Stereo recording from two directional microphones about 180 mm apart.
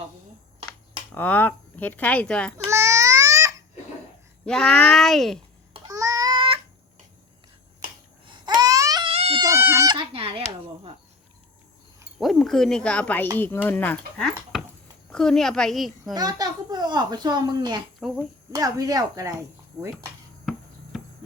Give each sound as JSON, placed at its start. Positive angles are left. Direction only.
{"t": 1.1, "sound": "speech", "side_deg": 10}
{"t": 2.6, "sound": "babbling", "side_deg": -15}
{"t": 4.4, "sound": "speech", "side_deg": 5}
{"t": 5.9, "sound": "a sound", "side_deg": -20}
{"t": 8.3, "sound": "babbling", "side_deg": -25}
{"t": 9.5, "sound": "music", "side_deg": -15}
{"t": 12.2, "sound": "speech", "side_deg": 0}
{"t": 16.1, "sound": "a child's voice", "side_deg": -20}
{"t": 20.4, "sound": "insect", "side_deg": 0}